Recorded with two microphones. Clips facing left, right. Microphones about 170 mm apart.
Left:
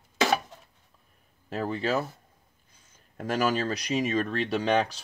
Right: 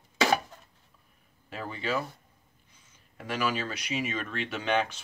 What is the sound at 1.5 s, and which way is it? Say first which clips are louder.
Speech: left 5 dB; 40° left (ahead or behind).